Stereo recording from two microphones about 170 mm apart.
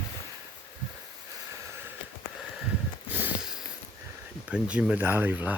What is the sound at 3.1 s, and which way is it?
Sniff, 10° right (ahead or behind).